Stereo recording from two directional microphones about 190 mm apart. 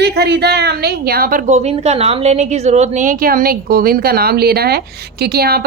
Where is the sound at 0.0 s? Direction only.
60° right (ahead or behind).